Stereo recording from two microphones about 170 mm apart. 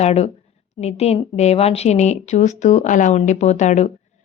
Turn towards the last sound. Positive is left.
turn(degrees=45)  # may be behind; listen again after turning